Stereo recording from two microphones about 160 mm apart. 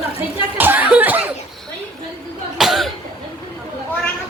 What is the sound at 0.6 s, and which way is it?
Speech, 10° right (ahead or behind).